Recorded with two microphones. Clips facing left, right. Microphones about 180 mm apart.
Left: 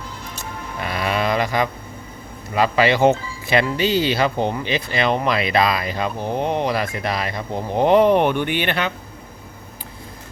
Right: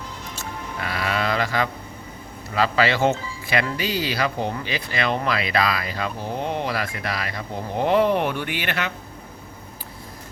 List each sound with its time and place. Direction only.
0.3 s music: 20° left (ahead or behind)
2.6 s speech: 15° left (ahead or behind)